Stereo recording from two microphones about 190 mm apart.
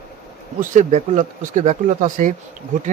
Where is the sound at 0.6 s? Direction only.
40° right (ahead or behind).